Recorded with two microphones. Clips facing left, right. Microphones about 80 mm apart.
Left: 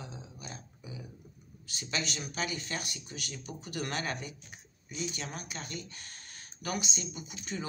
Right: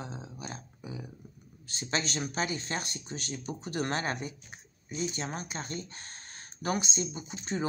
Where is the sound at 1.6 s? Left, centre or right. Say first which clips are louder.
Right 3 dB; right.